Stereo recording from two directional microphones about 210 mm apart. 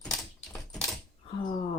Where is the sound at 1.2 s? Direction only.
25° left (ahead or behind).